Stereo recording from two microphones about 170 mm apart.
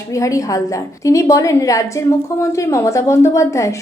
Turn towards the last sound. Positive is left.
turn(degrees=15)  # may be behind; listen again after turning